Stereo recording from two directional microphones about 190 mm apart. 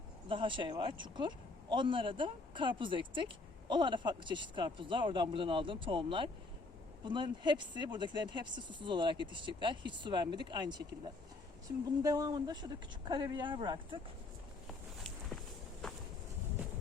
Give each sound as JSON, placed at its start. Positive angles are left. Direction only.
{"t": 0.3, "sound": "speech", "side_deg": -25}
{"t": 12.0, "sound": "speech", "side_deg": -20}
{"t": 15.8, "sound": "a sound", "side_deg": 5}